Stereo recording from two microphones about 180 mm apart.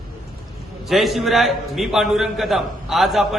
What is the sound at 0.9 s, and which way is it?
A man's voice, centre (ahead or behind).